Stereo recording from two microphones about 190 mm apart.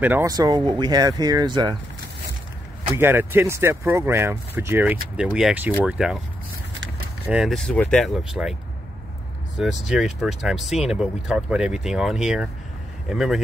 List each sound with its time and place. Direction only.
0.0 s speech: 10° right (ahead or behind)
3.0 s speech: 10° right (ahead or behind)
7.2 s speech: centre (ahead or behind)
9.6 s speech: 5° right (ahead or behind)